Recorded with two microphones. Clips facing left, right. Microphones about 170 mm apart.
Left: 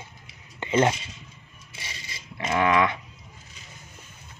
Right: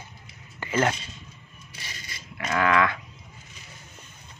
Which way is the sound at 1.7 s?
25° left (ahead or behind).